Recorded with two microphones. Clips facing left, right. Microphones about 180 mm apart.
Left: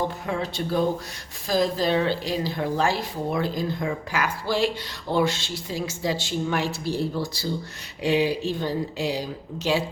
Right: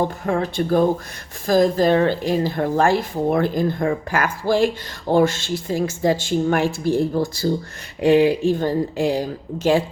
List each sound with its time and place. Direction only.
0.3 s speech: 50° right (ahead or behind)